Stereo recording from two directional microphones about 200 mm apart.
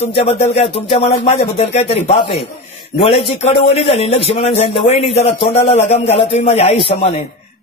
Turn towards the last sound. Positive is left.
turn(degrees=30)  # may be behind; listen again after turning